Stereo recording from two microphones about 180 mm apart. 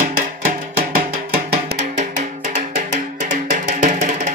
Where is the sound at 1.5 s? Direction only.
40° right (ahead or behind).